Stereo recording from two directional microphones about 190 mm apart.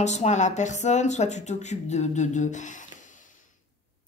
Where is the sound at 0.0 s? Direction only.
35° left (ahead or behind).